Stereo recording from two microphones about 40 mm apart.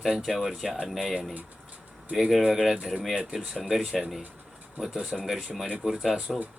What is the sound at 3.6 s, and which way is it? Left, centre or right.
Speech, centre.